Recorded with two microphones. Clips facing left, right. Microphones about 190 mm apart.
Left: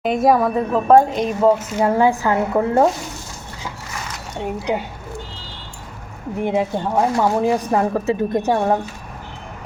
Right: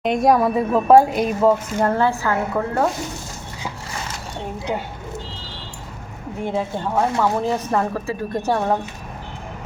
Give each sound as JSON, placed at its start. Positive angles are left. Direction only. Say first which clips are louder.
{"t": 0.0, "sound": "a woman's voice", "louder": "left 1 dB", "side_deg": 0}
{"t": 1.8, "sound": "speech", "louder": "left 5 dB", "side_deg": 10}
{"t": 6.4, "sound": "speech", "louder": "left 4 dB", "side_deg": 15}